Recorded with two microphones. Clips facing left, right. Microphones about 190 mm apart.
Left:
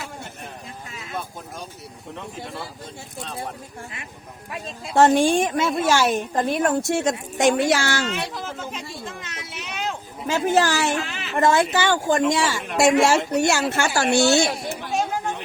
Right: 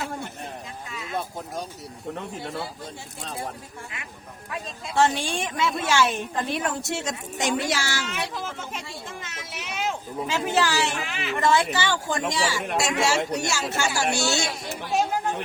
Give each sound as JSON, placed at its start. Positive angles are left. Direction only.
{"t": 4.9, "sound": "a woman's voice", "side_deg": 50}
{"t": 9.6, "sound": "a sound", "side_deg": -10}
{"t": 10.2, "sound": "a woman's voice", "side_deg": 45}
{"t": 11.0, "sound": "speech", "side_deg": -10}
{"t": 11.3, "sound": "a woman's voice", "side_deg": 50}